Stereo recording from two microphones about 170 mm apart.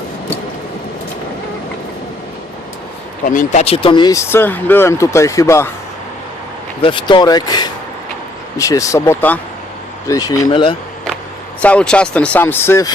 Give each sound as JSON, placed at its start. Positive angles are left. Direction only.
{"t": 3.2, "sound": "speech", "side_deg": 45}
{"t": 6.8, "sound": "speech", "side_deg": 30}
{"t": 11.6, "sound": "speech", "side_deg": 5}